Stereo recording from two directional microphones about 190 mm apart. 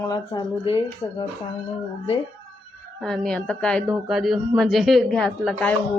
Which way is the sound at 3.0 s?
5° left (ahead or behind).